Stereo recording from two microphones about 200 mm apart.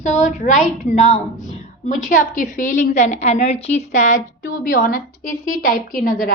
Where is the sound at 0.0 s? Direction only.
40° left (ahead or behind).